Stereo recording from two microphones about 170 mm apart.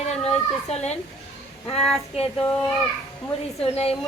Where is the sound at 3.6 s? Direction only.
35° left (ahead or behind).